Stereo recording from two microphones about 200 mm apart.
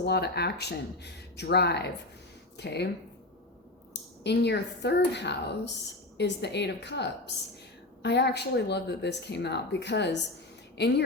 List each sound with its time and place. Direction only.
0.0 s speech: 55° left (ahead or behind)
4.2 s a woman's voice: 55° left (ahead or behind)